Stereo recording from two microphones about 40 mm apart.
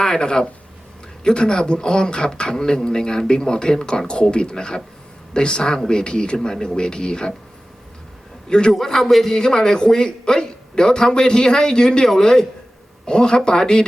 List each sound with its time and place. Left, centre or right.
0.0 s a man's voice: centre
8.4 s a man's voice: left
8.7 s a man's voice: centre